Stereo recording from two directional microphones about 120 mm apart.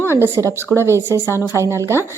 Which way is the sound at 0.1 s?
25° right (ahead or behind).